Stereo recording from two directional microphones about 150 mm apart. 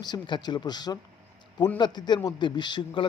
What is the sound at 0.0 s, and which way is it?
Speech, 30° left (ahead or behind).